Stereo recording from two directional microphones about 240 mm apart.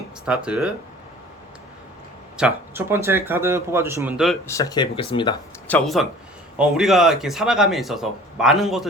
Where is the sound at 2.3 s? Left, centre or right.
Centre.